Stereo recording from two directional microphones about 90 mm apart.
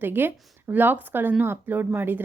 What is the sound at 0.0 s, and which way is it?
Speech, 20° right (ahead or behind).